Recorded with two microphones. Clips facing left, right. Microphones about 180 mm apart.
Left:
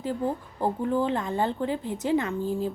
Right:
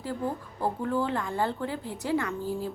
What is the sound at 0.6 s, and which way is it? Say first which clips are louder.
A woman's voice: left 3 dB; 20° left (ahead or behind).